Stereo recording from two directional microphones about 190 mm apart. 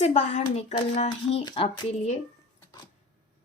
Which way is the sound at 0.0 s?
35° left (ahead or behind).